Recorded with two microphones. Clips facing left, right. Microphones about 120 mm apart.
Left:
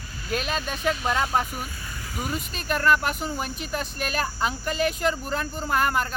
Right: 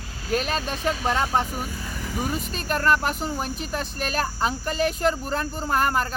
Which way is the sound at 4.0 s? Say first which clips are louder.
Right 2 dB; 35° right (ahead or behind).